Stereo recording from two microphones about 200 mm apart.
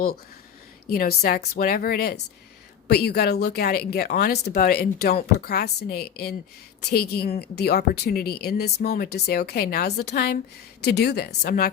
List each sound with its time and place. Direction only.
0.9 s speech: 50° left (ahead or behind)